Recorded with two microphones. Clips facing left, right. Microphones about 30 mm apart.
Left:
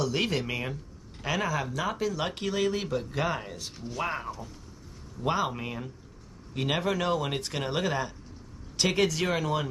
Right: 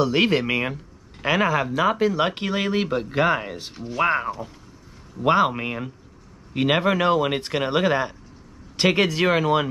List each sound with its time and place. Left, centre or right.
0.0 s speech: right
3.7 s speech: centre
4.0 s speech: right